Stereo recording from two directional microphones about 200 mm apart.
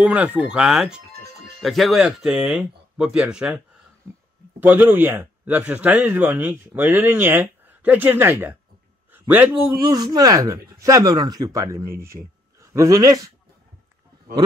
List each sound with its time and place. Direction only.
0.0 s a man's voice: 5° right (ahead or behind)
9.8 s a man's voice: 20° right (ahead or behind)